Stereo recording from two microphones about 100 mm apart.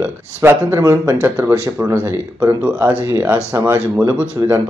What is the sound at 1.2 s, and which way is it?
Speech, 20° right (ahead or behind).